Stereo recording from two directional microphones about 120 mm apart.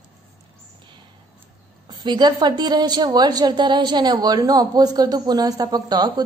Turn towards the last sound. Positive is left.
turn(degrees=-35)  # may be behind; listen again after turning